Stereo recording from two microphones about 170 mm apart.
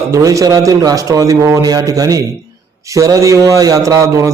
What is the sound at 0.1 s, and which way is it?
A man's voice, 20° right (ahead or behind).